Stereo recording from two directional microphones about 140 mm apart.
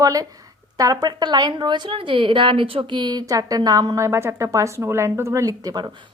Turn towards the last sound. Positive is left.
turn(degrees=-25)  # may be behind; listen again after turning